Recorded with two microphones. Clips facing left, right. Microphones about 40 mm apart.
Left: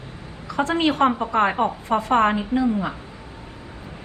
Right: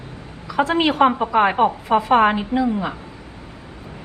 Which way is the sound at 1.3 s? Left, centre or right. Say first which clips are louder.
Right 4 dB; centre.